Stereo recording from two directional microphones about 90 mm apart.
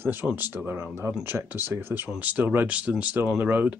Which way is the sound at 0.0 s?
20° right (ahead or behind).